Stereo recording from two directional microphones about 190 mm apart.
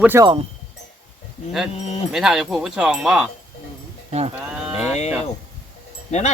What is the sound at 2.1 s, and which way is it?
Speech, centre (ahead or behind).